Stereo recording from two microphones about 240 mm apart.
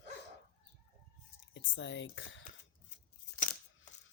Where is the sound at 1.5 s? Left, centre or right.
Left.